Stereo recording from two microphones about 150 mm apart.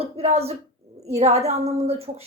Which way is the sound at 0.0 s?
45° right (ahead or behind).